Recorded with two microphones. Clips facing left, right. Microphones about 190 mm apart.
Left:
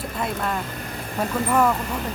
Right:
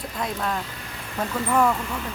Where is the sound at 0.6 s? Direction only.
50° left (ahead or behind).